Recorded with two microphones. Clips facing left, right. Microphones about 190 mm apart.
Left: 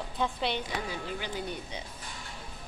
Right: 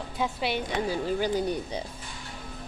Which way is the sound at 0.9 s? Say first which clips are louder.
Right 9 dB; 40° right (ahead or behind).